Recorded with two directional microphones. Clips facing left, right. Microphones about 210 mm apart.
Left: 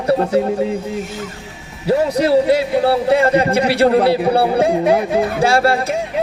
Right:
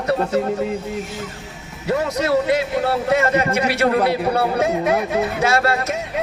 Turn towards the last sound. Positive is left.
turn(degrees=30)  # may be behind; listen again after turning